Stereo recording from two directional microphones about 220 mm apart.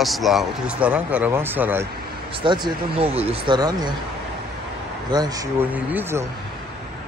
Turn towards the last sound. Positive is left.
turn(degrees=-10)  # may be behind; listen again after turning